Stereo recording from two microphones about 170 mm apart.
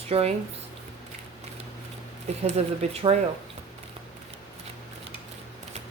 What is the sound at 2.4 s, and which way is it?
Speech, 35° right (ahead or behind).